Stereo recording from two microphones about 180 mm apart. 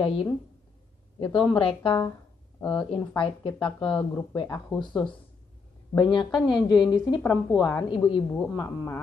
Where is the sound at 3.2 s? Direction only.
30° left (ahead or behind).